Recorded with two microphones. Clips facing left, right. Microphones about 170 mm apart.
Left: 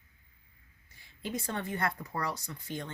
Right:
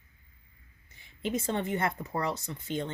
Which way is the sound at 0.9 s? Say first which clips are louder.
Right 5 dB; 20° right (ahead or behind).